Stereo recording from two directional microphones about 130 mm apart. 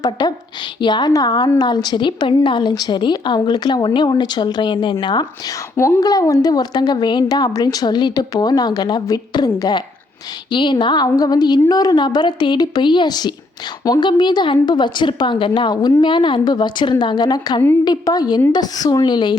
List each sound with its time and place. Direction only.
0.0 s a woman's voice: 30° left (ahead or behind)
5.7 s a woman's voice: 20° left (ahead or behind)